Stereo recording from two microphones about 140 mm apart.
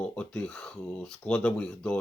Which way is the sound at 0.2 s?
5° left (ahead or behind).